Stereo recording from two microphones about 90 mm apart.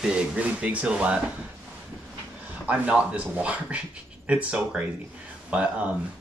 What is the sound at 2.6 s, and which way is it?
Speech, 15° right (ahead or behind).